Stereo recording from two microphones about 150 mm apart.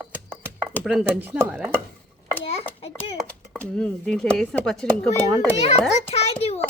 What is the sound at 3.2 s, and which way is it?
Speech, 5° left (ahead or behind).